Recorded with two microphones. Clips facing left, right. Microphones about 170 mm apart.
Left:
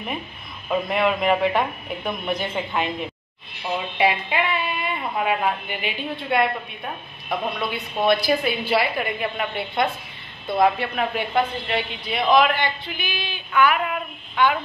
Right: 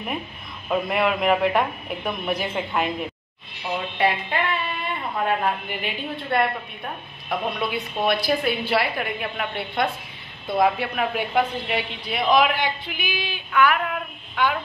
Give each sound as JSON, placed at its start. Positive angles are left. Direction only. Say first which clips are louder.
{"t": 0.7, "sound": "a woman's voice", "louder": "left 1 dB", "side_deg": 0}